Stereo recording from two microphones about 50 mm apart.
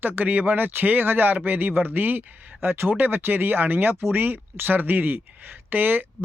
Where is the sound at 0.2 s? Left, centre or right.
Right.